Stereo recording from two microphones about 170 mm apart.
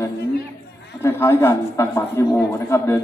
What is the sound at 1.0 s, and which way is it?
A man's voice, 15° left (ahead or behind).